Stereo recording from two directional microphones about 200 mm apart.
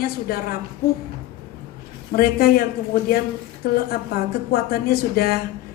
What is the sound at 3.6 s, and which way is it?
A woman's voice, 50° left (ahead or behind).